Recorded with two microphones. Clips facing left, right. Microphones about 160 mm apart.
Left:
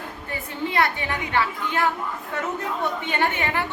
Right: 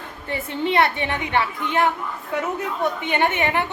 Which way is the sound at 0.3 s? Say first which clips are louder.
Right 6 dB; 25° right (ahead or behind).